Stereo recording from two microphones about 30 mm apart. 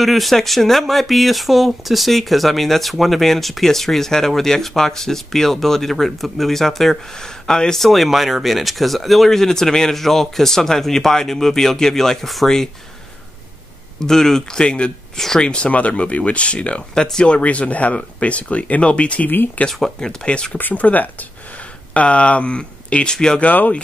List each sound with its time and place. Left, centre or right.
0.0 s speech: centre
7.2 s speech: centre
7.8 s speech: centre
9.9 s speech: centre
12.3 s speech: centre
13.9 s speech: centre
14.6 s speech: left
15.1 s speech: centre
15.4 s speech: left
19.6 s speech: left
20.0 s speech: left
20.5 s speech: left
21.9 s speech: left